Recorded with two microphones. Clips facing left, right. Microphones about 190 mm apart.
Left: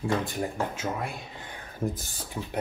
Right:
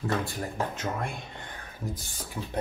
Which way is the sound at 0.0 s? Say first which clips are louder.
Left 2 dB; 15° left (ahead or behind).